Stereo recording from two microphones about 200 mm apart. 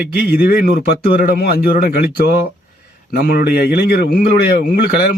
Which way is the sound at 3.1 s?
50° left (ahead or behind).